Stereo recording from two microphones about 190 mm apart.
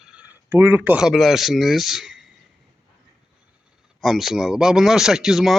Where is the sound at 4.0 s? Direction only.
Centre (ahead or behind).